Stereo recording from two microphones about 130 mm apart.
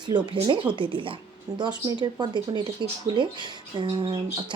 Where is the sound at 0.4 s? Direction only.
40° right (ahead or behind).